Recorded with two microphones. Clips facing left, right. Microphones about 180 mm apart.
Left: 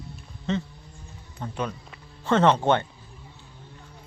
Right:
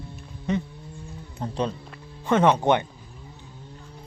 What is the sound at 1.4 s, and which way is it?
Speech, 30° right (ahead or behind).